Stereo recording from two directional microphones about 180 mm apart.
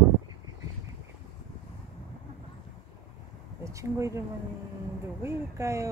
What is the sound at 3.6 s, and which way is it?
Speech, 15° right (ahead or behind).